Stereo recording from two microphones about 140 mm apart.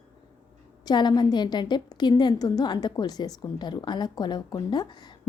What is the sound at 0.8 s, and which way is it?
A woman's voice, 30° left (ahead or behind).